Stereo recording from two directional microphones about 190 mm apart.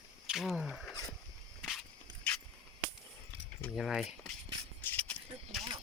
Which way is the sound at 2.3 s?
5° left (ahead or behind).